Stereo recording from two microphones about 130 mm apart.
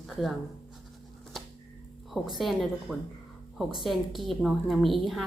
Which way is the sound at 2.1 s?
Centre (ahead or behind).